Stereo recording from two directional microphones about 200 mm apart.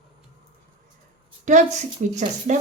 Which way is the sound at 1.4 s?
35° right (ahead or behind).